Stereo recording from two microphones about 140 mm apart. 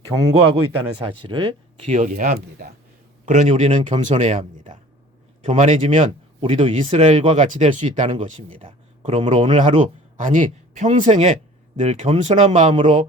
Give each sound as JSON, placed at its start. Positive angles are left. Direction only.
{"t": 0.1, "sound": "speech", "side_deg": -25}
{"t": 0.9, "sound": "speech", "side_deg": -35}
{"t": 2.0, "sound": "speech", "side_deg": -65}
{"t": 3.2, "sound": "speech", "side_deg": -60}
{"t": 6.0, "sound": "speech", "side_deg": -40}
{"t": 7.4, "sound": "speech", "side_deg": -65}
{"t": 8.5, "sound": "speech", "side_deg": -45}
{"t": 10.2, "sound": "speech", "side_deg": -70}
{"t": 12.7, "sound": "speech", "side_deg": -35}